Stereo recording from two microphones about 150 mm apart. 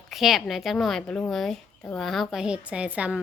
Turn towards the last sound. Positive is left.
turn(degrees=-10)  # may be behind; listen again after turning